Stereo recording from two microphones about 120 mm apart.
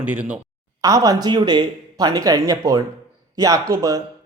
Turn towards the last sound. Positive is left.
turn(degrees=-30)  # may be behind; listen again after turning